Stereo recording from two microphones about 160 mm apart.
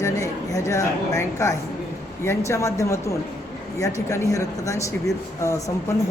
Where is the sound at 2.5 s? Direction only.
20° left (ahead or behind).